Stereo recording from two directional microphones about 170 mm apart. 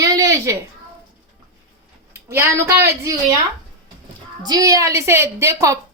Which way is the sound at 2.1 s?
15° right (ahead or behind).